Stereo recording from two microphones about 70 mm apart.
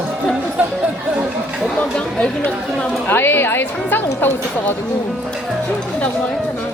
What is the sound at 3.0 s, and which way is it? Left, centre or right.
A woman's voice, left.